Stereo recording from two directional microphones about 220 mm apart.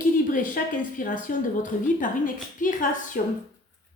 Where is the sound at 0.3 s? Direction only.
35° left (ahead or behind).